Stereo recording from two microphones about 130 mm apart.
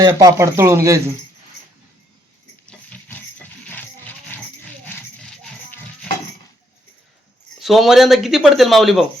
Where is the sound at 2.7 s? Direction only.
10° left (ahead or behind).